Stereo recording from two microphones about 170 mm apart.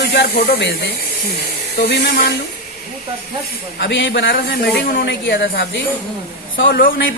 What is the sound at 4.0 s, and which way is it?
Speech, 90° left.